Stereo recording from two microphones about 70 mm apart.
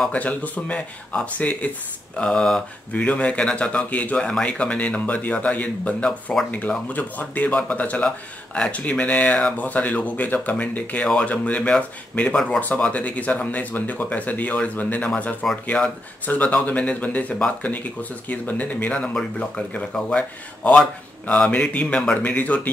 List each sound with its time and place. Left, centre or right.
0.1 s speech: left
15.4 s speech: centre
16.3 s speech: left
19.1 s speech: centre
22.3 s speech: left